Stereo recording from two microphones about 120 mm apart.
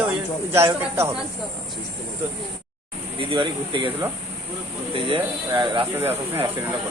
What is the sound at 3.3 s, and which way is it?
Speech, 45° right (ahead or behind).